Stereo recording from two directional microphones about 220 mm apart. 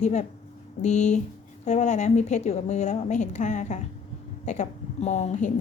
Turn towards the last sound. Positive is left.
turn(degrees=30)  # may be behind; listen again after turning